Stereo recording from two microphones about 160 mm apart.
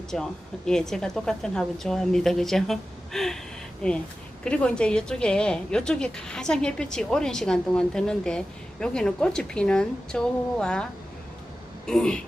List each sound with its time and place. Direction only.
0.1 s a woman's voice: 5° left (ahead or behind)
11.9 s a woman's voice: 5° left (ahead or behind)